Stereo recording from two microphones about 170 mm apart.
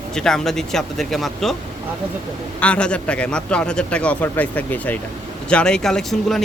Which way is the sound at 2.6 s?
5° left (ahead or behind).